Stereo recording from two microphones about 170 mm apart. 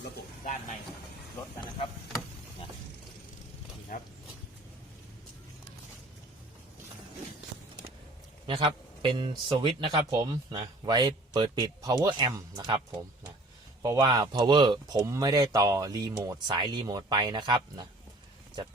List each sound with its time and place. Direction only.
3.9 s speech: 55° left (ahead or behind)
8.4 s speech: 30° right (ahead or behind)